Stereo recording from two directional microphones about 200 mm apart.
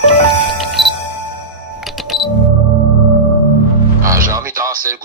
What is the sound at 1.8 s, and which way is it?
Music, centre (ahead or behind).